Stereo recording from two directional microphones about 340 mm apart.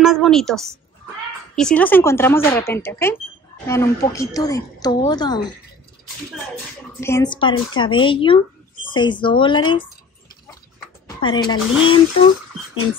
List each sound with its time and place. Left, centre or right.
0.0 s a woman's voice: centre
7.0 s a woman's voice: centre
11.1 s a woman's voice: centre